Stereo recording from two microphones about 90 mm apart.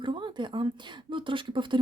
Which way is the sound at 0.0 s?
60° right (ahead or behind).